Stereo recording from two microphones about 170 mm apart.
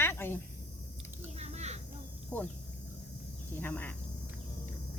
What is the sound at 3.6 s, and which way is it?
Speech, 10° left (ahead or behind).